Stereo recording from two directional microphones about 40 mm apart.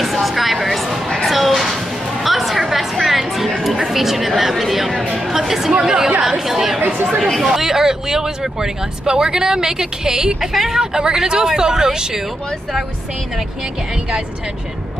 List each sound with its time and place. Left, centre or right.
0.0 s vehicle: centre
1.1 s a sound: centre
2.2 s music: centre
3.8 s a sound: centre
5.5 s chatter: centre
7.4 s speech: centre
10.5 s a woman's voice: centre
10.8 s speech: right